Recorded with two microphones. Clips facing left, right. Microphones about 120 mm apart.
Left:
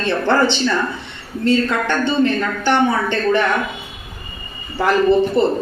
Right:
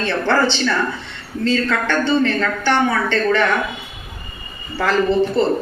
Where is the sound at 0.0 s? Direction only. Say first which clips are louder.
Left 1 dB; 15° left (ahead or behind).